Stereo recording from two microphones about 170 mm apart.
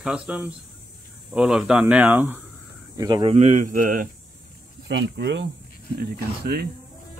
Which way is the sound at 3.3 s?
45° right (ahead or behind).